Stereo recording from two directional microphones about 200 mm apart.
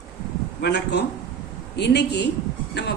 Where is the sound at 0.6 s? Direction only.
55° left (ahead or behind).